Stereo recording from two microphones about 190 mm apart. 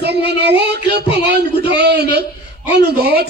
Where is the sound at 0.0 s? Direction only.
60° right (ahead or behind).